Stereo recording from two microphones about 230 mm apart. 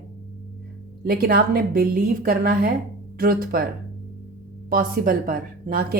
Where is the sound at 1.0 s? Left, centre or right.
Right.